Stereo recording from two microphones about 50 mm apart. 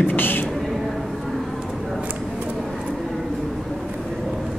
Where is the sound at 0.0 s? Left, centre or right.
Left.